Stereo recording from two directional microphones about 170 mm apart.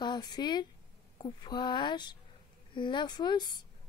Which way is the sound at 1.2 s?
25° left (ahead or behind).